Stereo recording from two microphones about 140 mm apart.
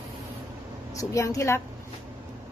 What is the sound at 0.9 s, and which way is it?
Speech, 25° left (ahead or behind).